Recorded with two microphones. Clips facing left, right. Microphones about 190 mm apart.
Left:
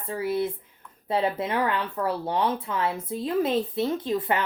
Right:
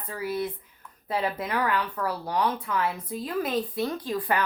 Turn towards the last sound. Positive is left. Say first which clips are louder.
# left 2 dB
turn(degrees=25)  # may be behind; listen again after turning